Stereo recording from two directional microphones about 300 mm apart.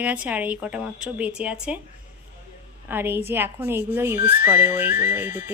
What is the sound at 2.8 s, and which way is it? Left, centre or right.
Music, centre.